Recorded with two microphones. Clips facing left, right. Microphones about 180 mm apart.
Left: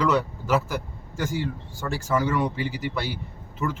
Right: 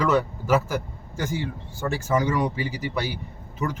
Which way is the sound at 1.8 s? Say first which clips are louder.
Right 2 dB; 20° right (ahead or behind).